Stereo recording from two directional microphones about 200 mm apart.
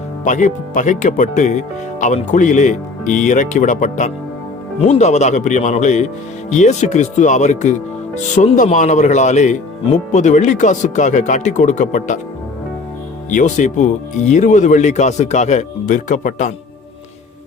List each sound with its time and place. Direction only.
0.3 s speech: 40° left (ahead or behind)
13.3 s speech: 40° left (ahead or behind)